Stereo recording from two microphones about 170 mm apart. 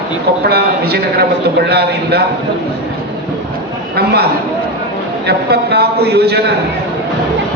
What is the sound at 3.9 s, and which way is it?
Speech, 70° right (ahead or behind).